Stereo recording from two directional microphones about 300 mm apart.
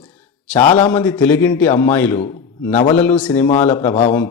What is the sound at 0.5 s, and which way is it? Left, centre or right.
Speech, left.